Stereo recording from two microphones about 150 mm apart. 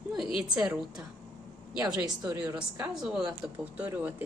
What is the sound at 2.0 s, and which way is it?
Speech, 25° right (ahead or behind).